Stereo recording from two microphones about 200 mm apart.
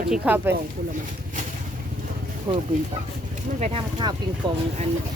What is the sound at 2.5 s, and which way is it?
Speech, 20° right (ahead or behind).